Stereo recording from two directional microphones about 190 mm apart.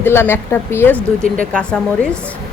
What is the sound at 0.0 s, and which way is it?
A woman's voice, 10° left (ahead or behind).